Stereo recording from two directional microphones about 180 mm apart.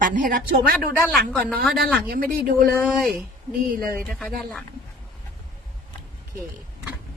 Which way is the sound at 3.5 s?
55° right (ahead or behind).